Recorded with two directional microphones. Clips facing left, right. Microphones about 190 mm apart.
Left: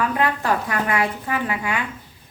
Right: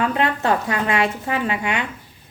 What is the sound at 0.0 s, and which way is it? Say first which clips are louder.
A woman's voice: right 1 dB; 25° right (ahead or behind).